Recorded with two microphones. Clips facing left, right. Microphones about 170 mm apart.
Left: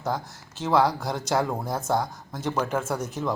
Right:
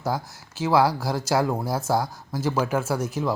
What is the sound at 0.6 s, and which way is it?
Speech, 5° right (ahead or behind).